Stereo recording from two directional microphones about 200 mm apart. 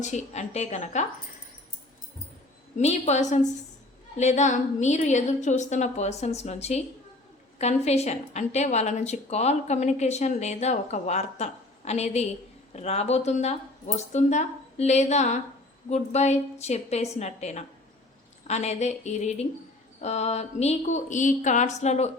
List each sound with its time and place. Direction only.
0.0 s a woman's voice: 35° left (ahead or behind)
2.7 s a woman's voice: 35° left (ahead or behind)